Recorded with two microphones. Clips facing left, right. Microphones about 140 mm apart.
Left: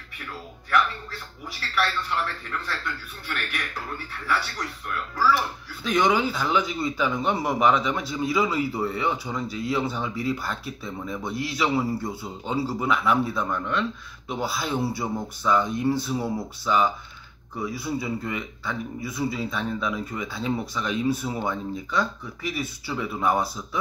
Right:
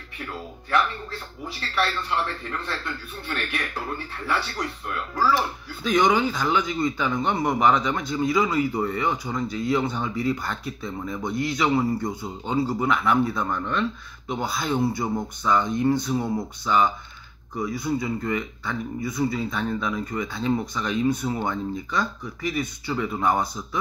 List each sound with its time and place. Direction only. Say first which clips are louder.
0.3 s speech: even; 25° right (ahead or behind)
5.9 s a man's voice: right 2 dB; centre (ahead or behind)